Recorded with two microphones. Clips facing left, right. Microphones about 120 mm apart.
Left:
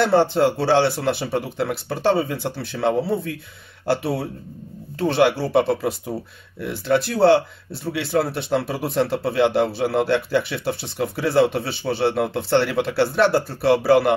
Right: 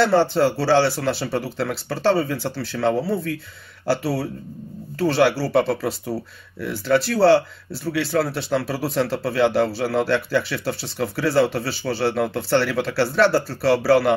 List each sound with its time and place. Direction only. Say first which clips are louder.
0.0 s speech: even; 20° left (ahead or behind)